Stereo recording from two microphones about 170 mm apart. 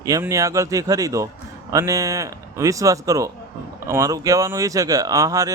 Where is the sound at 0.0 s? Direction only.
20° right (ahead or behind).